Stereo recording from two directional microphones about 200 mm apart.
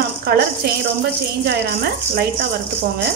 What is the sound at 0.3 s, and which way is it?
Speech, 50° right (ahead or behind).